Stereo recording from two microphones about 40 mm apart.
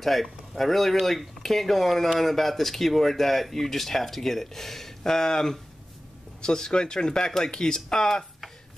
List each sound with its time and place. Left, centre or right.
0.0 s speech: centre